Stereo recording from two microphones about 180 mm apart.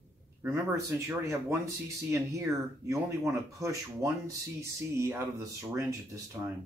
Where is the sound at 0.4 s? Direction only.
15° right (ahead or behind).